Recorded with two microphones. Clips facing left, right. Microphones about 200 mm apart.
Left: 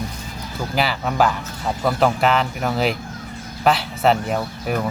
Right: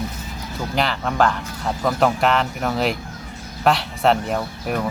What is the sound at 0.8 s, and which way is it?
Speech, 5° left (ahead or behind).